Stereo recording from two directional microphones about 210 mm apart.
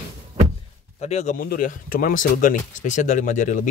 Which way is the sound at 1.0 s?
35° left (ahead or behind).